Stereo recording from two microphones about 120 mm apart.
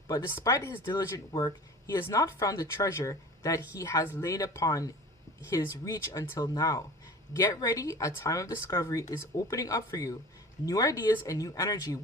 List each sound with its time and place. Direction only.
0.1 s speech: 25° left (ahead or behind)